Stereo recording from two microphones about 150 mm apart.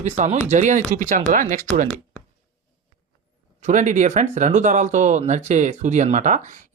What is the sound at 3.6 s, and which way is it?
Speech, 55° right (ahead or behind).